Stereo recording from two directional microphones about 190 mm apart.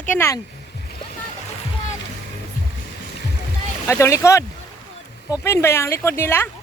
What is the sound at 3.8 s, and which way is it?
Speech, 15° left (ahead or behind).